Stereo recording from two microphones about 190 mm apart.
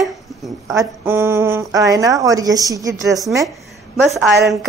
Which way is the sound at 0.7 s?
15° right (ahead or behind).